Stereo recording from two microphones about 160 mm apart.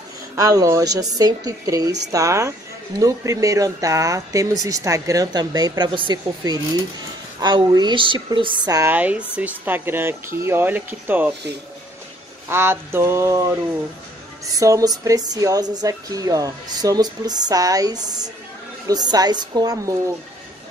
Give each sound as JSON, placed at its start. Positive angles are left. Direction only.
{"t": 0.4, "sound": "speech", "side_deg": -20}
{"t": 8.9, "sound": "speech", "side_deg": -10}
{"t": 12.4, "sound": "speech", "side_deg": -15}
{"t": 14.4, "sound": "speech", "side_deg": -20}